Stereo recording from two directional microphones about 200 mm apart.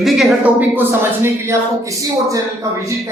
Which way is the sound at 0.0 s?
Centre (ahead or behind).